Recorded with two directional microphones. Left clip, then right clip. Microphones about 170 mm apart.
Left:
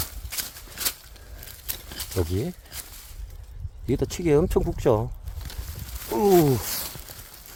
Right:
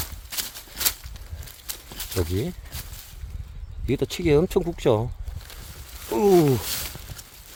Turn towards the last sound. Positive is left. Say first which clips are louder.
# right 1 dB
turn(degrees=-20)  # may be behind; listen again after turning